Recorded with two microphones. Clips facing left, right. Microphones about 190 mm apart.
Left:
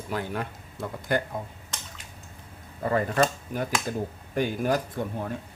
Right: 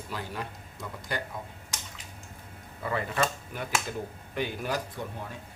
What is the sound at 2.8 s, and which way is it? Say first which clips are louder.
Speech: left 6 dB; 40° left (ahead or behind).